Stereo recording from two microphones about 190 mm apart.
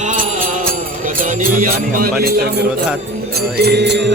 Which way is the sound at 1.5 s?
50° right (ahead or behind).